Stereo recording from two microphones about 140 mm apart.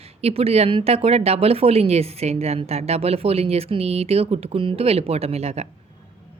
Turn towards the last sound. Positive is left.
turn(degrees=-45)  # may be behind; listen again after turning